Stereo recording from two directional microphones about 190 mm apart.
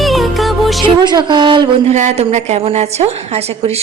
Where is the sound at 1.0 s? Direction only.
25° right (ahead or behind).